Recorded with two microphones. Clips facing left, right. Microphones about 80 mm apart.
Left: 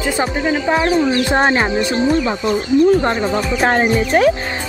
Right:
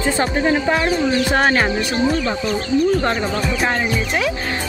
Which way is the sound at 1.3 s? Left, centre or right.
Left.